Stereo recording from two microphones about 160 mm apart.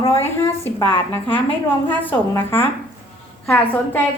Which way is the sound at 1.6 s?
10° left (ahead or behind).